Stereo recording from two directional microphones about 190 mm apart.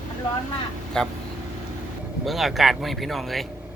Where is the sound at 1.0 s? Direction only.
5° left (ahead or behind).